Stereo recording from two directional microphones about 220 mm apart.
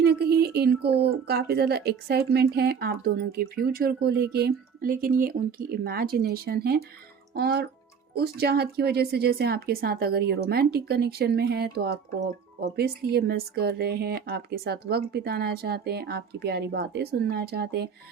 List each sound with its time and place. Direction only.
0.0 s speech: 45° right (ahead or behind)